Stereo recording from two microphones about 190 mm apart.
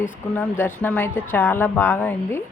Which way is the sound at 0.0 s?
10° left (ahead or behind).